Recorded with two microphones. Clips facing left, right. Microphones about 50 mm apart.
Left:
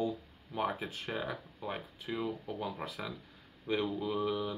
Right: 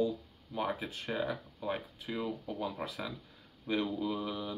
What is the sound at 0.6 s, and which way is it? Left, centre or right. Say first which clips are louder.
Speech: left 1 dB; centre.